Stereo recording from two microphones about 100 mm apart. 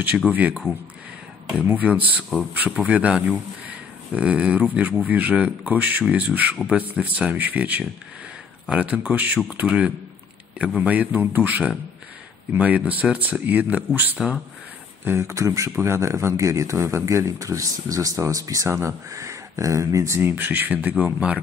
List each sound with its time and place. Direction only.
0.3 s speech: 15° right (ahead or behind)
1.7 s speech: 15° right (ahead or behind)
14.1 s speech: 5° right (ahead or behind)
15.0 s speech: 25° right (ahead or behind)
20.2 s speech: 20° right (ahead or behind)